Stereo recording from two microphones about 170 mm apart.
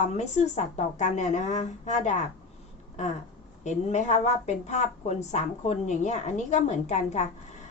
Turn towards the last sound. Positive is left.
turn(degrees=45)  # may be behind; listen again after turning